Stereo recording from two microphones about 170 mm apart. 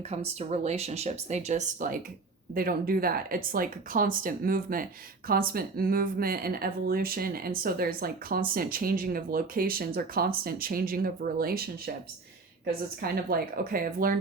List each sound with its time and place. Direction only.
0.1 s speech: 40° right (ahead or behind)
2.6 s a woman's voice: 60° right (ahead or behind)
13.0 s a woman's voice: 60° right (ahead or behind)